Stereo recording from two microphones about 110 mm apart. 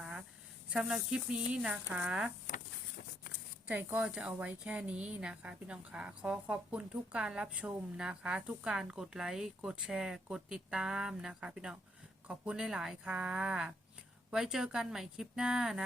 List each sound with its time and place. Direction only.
0.0 s a sound: 5° right (ahead or behind)
0.7 s speech: 5° right (ahead or behind)
3.7 s a woman's voice: 15° right (ahead or behind)